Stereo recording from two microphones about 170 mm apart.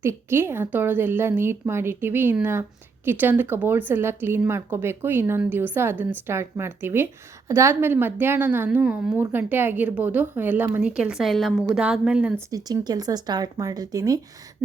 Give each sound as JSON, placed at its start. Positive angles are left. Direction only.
{"t": 0.0, "sound": "speech", "side_deg": -15}
{"t": 12.5, "sound": "speech", "side_deg": -20}